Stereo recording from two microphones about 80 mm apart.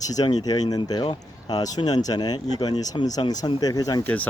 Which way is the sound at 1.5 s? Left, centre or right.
Left.